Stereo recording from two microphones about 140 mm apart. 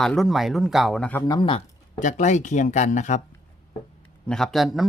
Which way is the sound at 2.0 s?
60° left (ahead or behind).